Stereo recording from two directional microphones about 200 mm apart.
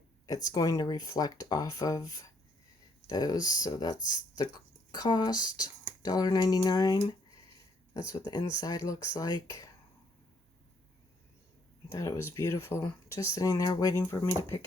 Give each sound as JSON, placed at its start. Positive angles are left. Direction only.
{"t": 0.3, "sound": "speech", "side_deg": 20}
{"t": 11.9, "sound": "speech", "side_deg": 15}